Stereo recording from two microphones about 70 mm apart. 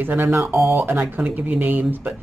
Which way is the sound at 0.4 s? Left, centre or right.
Right.